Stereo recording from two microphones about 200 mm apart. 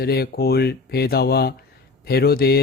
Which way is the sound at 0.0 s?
50° left (ahead or behind).